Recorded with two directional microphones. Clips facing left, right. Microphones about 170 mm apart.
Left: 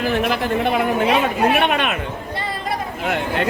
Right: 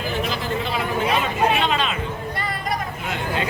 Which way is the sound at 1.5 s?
60° left (ahead or behind).